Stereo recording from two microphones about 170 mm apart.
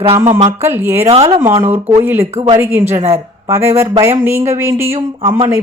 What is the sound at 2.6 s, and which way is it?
A woman's voice, 15° right (ahead or behind).